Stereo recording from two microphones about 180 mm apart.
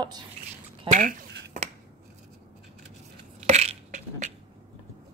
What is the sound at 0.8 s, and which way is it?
Speech, 45° right (ahead or behind).